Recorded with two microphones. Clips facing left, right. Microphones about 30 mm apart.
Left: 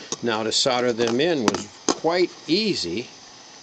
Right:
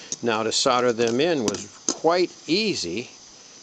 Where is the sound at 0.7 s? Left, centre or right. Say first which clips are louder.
Right 2 dB; left.